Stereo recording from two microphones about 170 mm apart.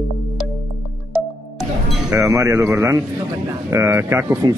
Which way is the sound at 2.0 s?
15° right (ahead or behind).